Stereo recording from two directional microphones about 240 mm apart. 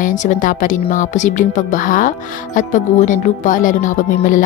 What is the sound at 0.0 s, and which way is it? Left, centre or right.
Speech, left.